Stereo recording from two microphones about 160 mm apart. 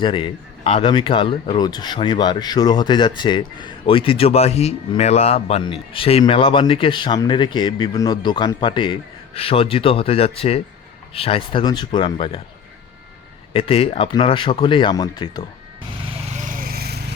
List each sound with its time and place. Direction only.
0.0 s speech: 30° left (ahead or behind)
13.5 s speech: 35° left (ahead or behind)
16.4 s lawn mower: 55° right (ahead or behind); by 17.0 s 75° right (ahead or behind)